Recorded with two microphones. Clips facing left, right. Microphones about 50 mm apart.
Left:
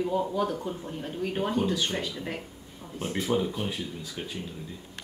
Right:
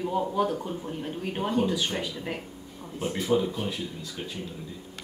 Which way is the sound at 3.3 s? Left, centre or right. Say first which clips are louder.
Right 3 dB; centre.